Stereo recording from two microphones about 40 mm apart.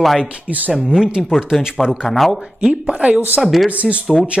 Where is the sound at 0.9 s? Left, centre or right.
Centre.